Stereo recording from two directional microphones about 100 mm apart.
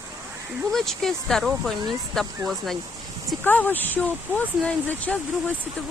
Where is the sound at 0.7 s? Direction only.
5° left (ahead or behind).